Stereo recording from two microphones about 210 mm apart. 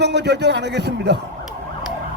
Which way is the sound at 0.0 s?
55° right (ahead or behind).